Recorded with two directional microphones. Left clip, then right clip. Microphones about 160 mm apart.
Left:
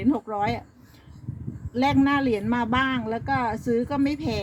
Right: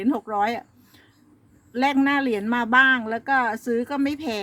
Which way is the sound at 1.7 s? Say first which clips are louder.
Right 1 dB; 35° right (ahead or behind).